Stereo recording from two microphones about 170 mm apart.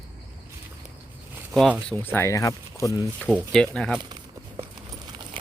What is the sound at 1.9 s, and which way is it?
Speech, 15° left (ahead or behind).